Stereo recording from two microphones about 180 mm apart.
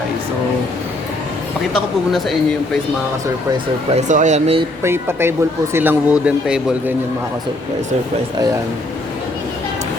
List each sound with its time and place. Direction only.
3.9 s speech: 40° right (ahead or behind)
4.8 s speech: 15° right (ahead or behind)